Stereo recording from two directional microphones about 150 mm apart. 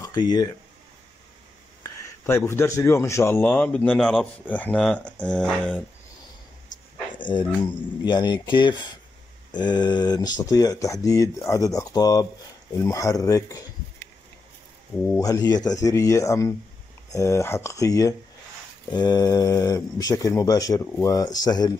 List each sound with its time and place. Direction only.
0.0 s speech: 30° left (ahead or behind)
1.8 s speech: 20° left (ahead or behind)
7.2 s speech: 30° left (ahead or behind)
15.1 s speech: 25° left (ahead or behind)